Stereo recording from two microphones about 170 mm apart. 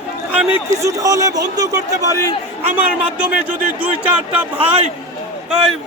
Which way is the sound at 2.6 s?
10° right (ahead or behind).